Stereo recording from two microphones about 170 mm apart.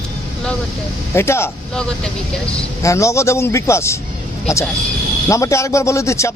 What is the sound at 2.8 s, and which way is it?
Speech, 15° left (ahead or behind).